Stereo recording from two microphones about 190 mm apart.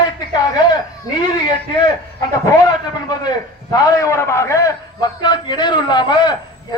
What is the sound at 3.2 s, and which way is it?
A man's voice, 15° left (ahead or behind).